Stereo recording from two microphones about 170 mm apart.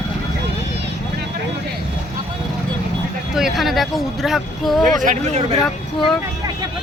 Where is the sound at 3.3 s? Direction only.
Centre (ahead or behind).